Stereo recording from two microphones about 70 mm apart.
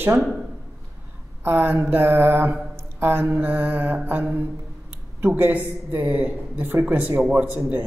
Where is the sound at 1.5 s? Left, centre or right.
Right.